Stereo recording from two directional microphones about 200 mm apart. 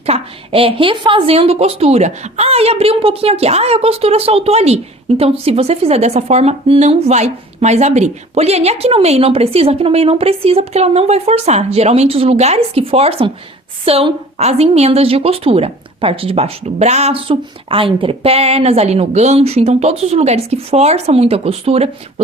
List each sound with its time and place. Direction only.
0.0 s a woman's voice: 30° right (ahead or behind)